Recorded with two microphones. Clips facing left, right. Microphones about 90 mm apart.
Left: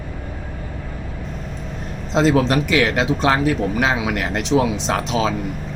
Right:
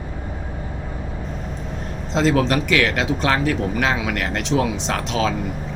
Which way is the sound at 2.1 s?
20° left (ahead or behind).